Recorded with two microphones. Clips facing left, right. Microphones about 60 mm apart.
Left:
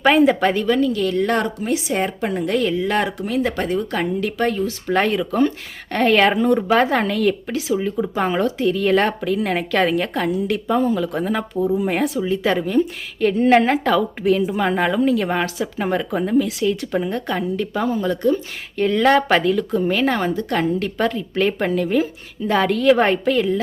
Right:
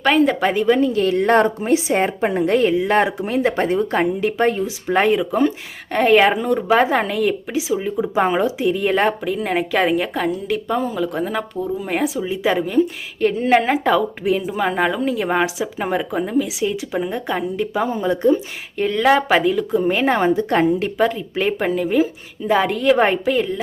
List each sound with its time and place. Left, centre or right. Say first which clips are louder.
0.0 s a woman's voice: left 1 dB; centre
0.5 s a woman's voice: right 2 dB; centre
18.8 s a woman's voice: even; centre
19.9 s a woman's voice: right 3 dB; right
21.0 s a woman's voice: left 1 dB; centre